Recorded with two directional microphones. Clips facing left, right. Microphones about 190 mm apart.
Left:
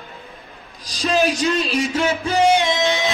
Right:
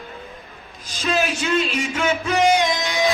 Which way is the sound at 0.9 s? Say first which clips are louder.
Left 4 dB; 35° left (ahead or behind).